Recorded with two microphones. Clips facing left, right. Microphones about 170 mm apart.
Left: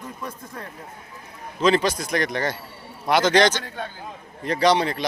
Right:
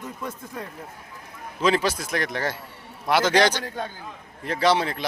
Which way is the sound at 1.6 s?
5° right (ahead or behind).